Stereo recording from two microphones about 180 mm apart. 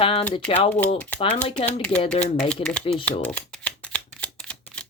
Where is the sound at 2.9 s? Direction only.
30° left (ahead or behind).